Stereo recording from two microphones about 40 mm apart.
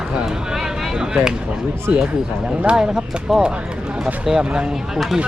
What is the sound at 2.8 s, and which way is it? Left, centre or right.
Speech, centre.